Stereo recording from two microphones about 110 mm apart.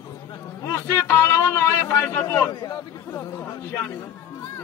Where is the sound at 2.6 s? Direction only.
25° left (ahead or behind).